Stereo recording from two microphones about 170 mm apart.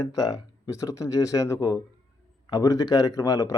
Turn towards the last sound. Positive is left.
turn(degrees=20)  # may be behind; listen again after turning